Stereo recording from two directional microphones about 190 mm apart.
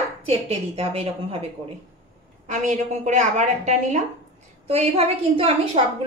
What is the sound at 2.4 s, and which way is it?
A woman's voice, 40° right (ahead or behind).